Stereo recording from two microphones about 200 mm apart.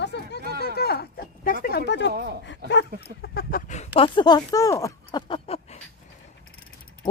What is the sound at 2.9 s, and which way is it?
Speech, 55° left (ahead or behind).